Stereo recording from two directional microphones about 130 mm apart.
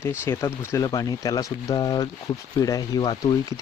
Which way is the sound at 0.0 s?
20° left (ahead or behind).